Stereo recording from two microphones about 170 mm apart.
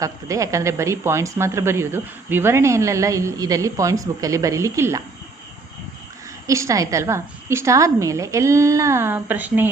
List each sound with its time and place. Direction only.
0.0 s speech: 20° right (ahead or behind)
6.5 s speech: 20° right (ahead or behind)